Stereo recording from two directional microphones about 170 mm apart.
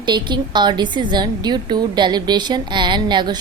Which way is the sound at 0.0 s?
25° right (ahead or behind).